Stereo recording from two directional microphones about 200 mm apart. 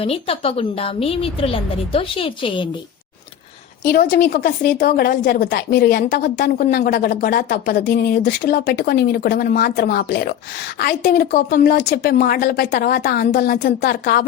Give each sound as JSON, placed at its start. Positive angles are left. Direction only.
{"t": 0.0, "sound": "a woman's voice", "side_deg": 30}
{"t": 3.8, "sound": "a woman's voice", "side_deg": 45}